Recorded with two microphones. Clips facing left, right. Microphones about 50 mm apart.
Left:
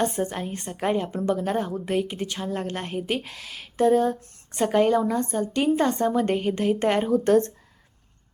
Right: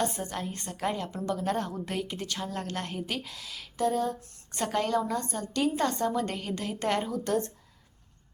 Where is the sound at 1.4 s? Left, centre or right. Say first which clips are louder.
Left 4 dB; centre.